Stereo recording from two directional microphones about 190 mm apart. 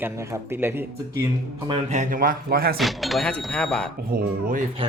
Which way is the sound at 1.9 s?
45° right (ahead or behind).